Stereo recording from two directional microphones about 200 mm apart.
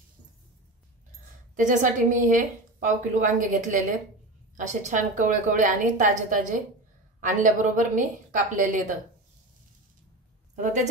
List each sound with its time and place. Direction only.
1.6 s a woman's voice: 40° right (ahead or behind)
10.5 s speech: 40° right (ahead or behind)